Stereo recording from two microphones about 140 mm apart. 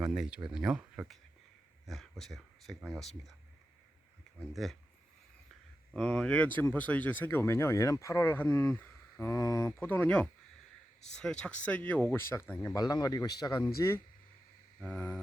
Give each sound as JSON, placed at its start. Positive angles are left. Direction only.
{"t": 0.0, "sound": "speech", "side_deg": -5}
{"t": 4.5, "sound": "speech", "side_deg": 0}
{"t": 6.0, "sound": "a man's voice", "side_deg": 5}
{"t": 14.8, "sound": "speech", "side_deg": 5}